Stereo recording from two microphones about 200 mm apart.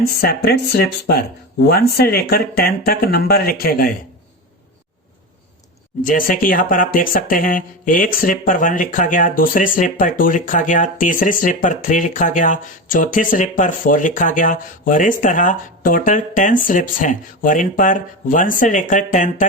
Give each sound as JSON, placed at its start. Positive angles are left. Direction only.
{"t": 0.0, "sound": "speech", "side_deg": 50}
{"t": 6.0, "sound": "speech", "side_deg": 40}